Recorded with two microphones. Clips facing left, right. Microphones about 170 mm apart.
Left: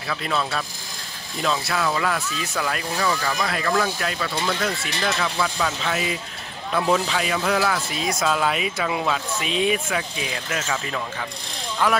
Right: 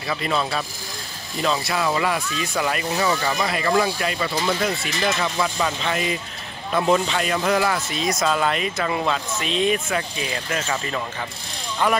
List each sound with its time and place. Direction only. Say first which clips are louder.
0.1 s speech: right 2 dB; 5° right (ahead or behind)
10.6 s speech: right 1 dB; 5° right (ahead or behind)